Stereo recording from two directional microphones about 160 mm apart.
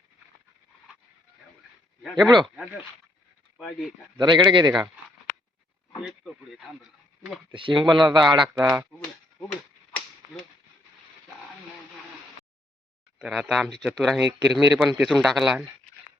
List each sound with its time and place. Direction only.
2.0 s speech: centre (ahead or behind)
3.6 s speech: centre (ahead or behind)
4.2 s speech: 25° right (ahead or behind)
7.5 s speech: 30° right (ahead or behind)
8.5 s speech: 15° right (ahead or behind)
9.5 s whip: 5° left (ahead or behind)
13.1 s speech: 5° right (ahead or behind)